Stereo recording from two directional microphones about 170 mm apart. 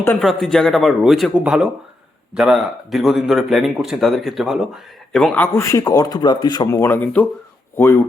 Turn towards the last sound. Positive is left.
turn(degrees=15)  # may be behind; listen again after turning